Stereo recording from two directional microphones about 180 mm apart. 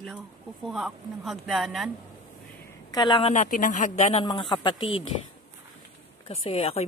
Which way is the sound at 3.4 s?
45° left (ahead or behind).